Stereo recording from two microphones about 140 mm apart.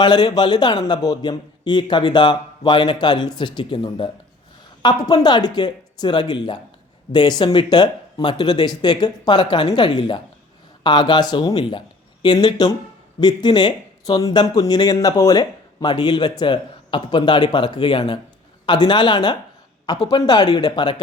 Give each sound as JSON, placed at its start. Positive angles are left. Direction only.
{"t": 0.0, "sound": "speech", "side_deg": 30}